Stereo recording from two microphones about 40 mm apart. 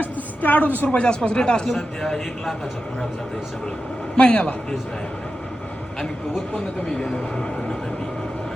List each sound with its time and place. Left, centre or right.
0.0 s a sound: left
0.9 s a man's voice: left; by 2.2 s centre
4.1 s speech: left
7.0 s a man's voice: centre